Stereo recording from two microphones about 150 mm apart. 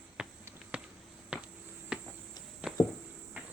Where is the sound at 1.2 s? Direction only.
5° right (ahead or behind).